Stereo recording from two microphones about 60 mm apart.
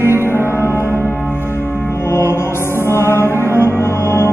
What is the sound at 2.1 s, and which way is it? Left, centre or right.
Music, left.